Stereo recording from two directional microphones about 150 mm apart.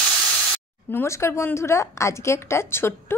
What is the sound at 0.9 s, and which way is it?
A woman's voice, 20° left (ahead or behind).